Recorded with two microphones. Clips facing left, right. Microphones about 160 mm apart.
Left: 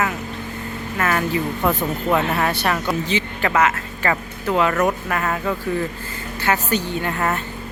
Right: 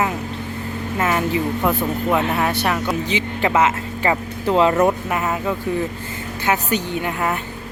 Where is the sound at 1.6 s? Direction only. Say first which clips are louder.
Left 1 dB; 5° right (ahead or behind).